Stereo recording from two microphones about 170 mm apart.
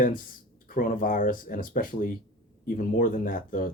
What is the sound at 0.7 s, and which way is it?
Speech, 55° left (ahead or behind).